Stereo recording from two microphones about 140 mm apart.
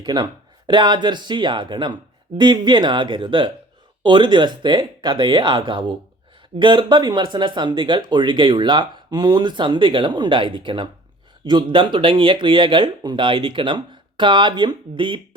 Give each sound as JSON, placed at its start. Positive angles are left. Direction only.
{"t": 0.0, "sound": "speech", "side_deg": -30}